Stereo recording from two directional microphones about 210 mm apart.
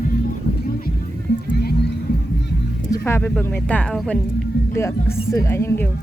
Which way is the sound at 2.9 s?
10° left (ahead or behind).